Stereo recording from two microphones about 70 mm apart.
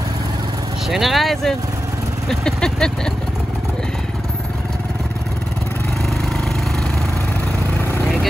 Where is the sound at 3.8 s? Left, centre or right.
Centre.